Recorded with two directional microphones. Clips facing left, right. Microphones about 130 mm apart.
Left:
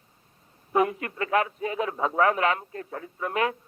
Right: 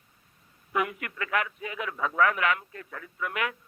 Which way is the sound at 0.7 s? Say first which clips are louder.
Left 6 dB; 30° left (ahead or behind).